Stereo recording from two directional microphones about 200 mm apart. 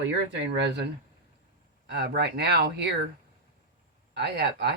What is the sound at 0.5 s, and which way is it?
Speech, 60° right (ahead or behind).